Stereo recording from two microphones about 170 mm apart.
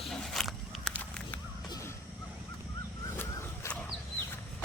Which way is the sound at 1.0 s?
10° left (ahead or behind).